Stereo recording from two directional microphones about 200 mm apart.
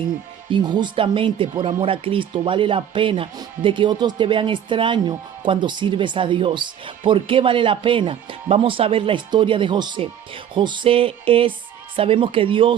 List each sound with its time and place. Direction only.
0.5 s speech: 20° right (ahead or behind)